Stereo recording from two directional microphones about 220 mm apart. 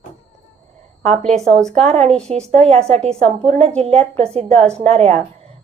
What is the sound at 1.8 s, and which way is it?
Speech, 30° right (ahead or behind).